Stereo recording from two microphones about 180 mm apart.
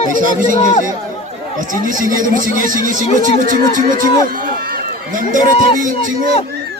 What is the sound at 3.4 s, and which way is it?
Speech, 50° right (ahead or behind).